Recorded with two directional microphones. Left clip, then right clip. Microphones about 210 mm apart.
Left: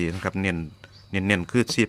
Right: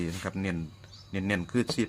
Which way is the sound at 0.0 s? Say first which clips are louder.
Left 8 dB; 50° left (ahead or behind).